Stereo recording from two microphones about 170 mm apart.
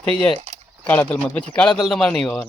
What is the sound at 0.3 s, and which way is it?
Keys jangling, 40° right (ahead or behind).